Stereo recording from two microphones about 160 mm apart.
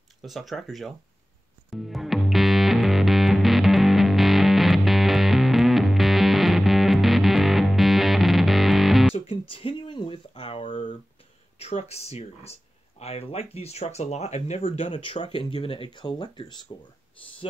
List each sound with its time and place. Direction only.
0.2 s speech: centre (ahead or behind)
1.7 s music: centre (ahead or behind)
9.1 s guitar: 35° left (ahead or behind)
10.7 s a sound: 50° left (ahead or behind)
11.5 s speech: 40° left (ahead or behind)